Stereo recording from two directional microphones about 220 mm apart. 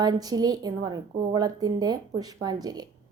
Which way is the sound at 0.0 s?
15° right (ahead or behind).